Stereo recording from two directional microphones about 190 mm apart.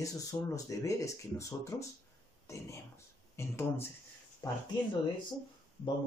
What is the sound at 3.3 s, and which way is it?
Speech, 15° left (ahead or behind).